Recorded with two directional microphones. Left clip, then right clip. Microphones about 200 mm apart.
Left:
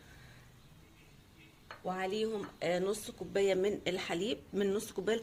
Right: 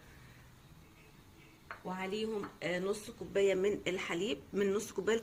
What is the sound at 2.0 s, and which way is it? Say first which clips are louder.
Speech: left 2 dB; 50° left (ahead or behind).